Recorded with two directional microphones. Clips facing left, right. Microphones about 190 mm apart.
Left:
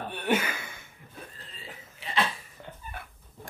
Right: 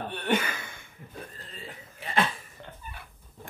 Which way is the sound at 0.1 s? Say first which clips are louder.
Left 1 dB; 10° left (ahead or behind).